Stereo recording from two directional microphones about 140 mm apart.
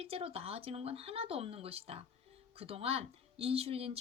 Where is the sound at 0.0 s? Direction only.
45° right (ahead or behind).